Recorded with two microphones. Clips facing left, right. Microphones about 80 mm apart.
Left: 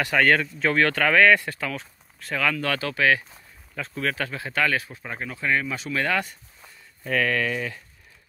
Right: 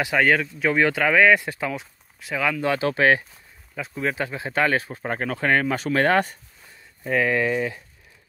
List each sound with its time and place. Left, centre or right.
0.0 s speech: centre; by 3.3 s right
3.7 s speech: centre; by 6.3 s right
7.0 s speech: centre